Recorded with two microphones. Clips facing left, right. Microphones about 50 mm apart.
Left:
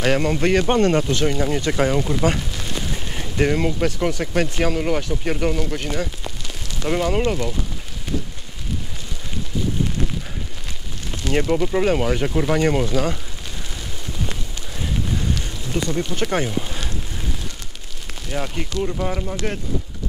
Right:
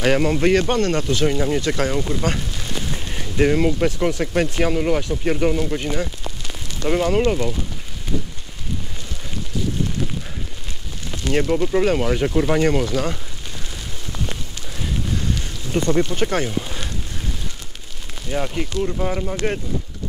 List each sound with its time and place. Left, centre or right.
0.0 s speech: centre
0.7 s speech: centre
1.8 s speech: centre
11.2 s speech: centre
14.8 s wind noise: centre
15.7 s speech: centre
16.3 s speech: centre
18.3 s speech: centre